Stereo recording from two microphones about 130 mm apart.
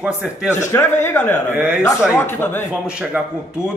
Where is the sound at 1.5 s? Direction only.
10° right (ahead or behind).